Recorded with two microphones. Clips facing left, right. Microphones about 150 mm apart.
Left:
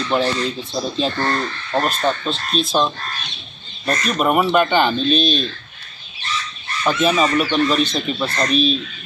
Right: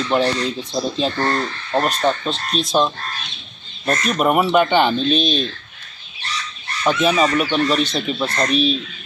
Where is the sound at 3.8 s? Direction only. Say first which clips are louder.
Right 1 dB; 5° right (ahead or behind).